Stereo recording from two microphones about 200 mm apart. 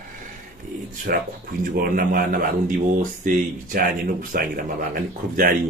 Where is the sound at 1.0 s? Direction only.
50° right (ahead or behind).